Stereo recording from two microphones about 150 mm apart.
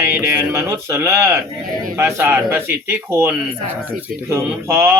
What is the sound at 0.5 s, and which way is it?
Speech, 20° right (ahead or behind).